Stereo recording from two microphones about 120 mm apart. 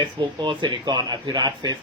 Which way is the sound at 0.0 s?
40° right (ahead or behind).